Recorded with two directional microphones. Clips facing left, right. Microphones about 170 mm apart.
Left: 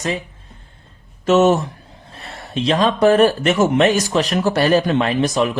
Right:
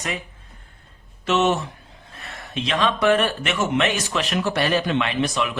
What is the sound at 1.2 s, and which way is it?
Speech, 40° left (ahead or behind).